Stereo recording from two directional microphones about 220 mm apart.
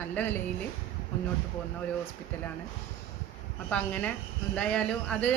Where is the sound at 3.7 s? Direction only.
5° left (ahead or behind).